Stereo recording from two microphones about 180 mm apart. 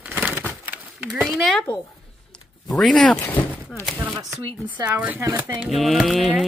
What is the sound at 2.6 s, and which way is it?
Speech, centre (ahead or behind).